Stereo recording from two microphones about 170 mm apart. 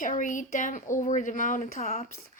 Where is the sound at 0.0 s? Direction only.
50° left (ahead or behind).